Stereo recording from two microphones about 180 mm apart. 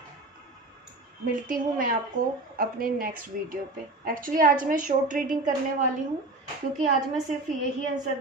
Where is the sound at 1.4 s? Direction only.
50° right (ahead or behind).